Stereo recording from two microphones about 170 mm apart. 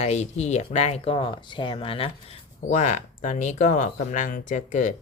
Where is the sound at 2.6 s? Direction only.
45° left (ahead or behind).